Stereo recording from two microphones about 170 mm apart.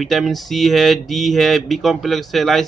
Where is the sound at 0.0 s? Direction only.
Centre (ahead or behind).